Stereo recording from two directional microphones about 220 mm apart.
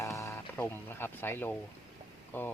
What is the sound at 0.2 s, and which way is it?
Speech, 10° left (ahead or behind).